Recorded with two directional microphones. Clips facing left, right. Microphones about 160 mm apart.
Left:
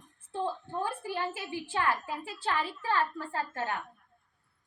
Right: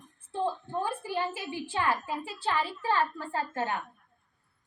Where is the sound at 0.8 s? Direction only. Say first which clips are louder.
Right 2 dB; 15° right (ahead or behind).